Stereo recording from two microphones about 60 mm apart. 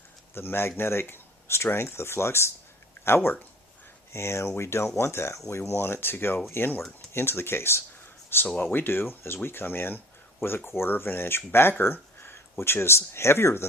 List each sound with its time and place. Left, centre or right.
0.3 s speech: left